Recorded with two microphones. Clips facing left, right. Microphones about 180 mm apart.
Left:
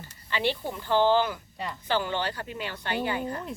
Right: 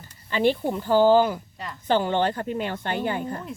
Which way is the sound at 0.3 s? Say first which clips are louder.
Right 7 dB; 45° right (ahead or behind).